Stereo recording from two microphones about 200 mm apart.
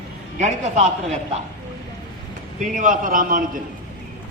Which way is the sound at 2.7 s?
40° right (ahead or behind).